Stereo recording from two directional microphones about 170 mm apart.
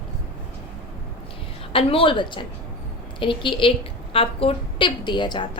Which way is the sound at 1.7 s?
30° left (ahead or behind).